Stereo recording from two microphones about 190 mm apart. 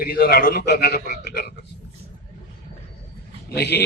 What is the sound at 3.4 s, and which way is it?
Speech, 60° left (ahead or behind).